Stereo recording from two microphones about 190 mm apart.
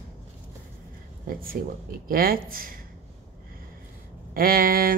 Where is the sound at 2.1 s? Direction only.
50° right (ahead or behind).